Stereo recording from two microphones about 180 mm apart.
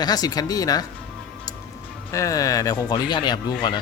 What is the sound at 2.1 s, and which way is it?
Speech, 20° left (ahead or behind).